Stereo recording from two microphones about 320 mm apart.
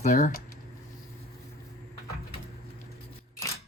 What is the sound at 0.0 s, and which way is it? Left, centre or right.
Speech, left.